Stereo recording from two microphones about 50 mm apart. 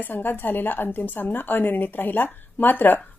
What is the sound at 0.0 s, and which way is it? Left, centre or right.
A woman's voice, left.